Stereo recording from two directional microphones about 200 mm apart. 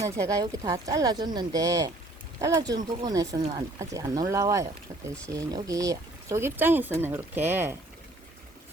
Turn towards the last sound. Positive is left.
turn(degrees=-10)  # may be behind; listen again after turning